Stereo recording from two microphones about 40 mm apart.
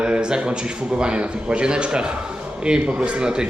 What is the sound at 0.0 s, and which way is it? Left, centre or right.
A man's voice, right.